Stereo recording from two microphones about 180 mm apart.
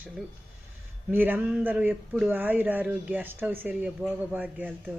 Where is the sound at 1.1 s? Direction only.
10° right (ahead or behind).